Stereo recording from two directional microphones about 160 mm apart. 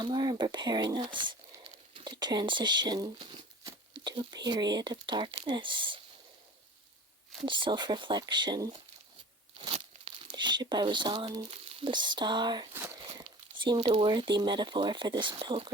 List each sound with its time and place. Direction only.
0.0 s speech: 25° right (ahead or behind)
1.6 s a sound: 30° right (ahead or behind)
3.9 s speech: 30° right (ahead or behind)
7.4 s speech: 30° right (ahead or behind)
9.6 s speech: 35° right (ahead or behind)
12.7 s a sound: 15° right (ahead or behind)
13.1 s speech: 25° right (ahead or behind)